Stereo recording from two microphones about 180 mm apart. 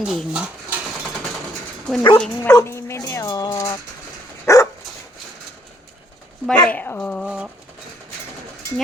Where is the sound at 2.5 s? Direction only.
15° left (ahead or behind).